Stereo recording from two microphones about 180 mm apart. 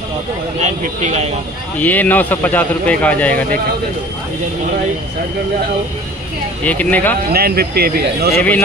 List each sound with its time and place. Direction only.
0.6 s speech: 40° right (ahead or behind)
1.8 s speech: 10° left (ahead or behind)
6.6 s speech: 10° left (ahead or behind)
7.3 s speech: 60° right (ahead or behind)
8.4 s speech: 10° left (ahead or behind)